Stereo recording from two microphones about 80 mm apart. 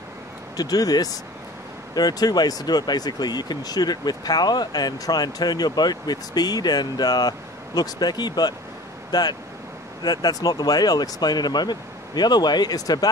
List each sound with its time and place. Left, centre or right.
0.6 s speech: left